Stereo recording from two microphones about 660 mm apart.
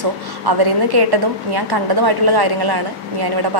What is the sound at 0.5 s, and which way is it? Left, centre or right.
A woman's voice, right.